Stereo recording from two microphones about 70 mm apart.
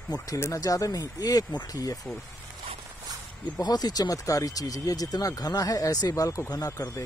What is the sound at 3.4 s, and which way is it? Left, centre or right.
A woman's voice, left.